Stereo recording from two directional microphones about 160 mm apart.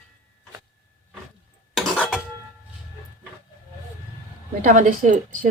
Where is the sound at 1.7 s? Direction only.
Centre (ahead or behind).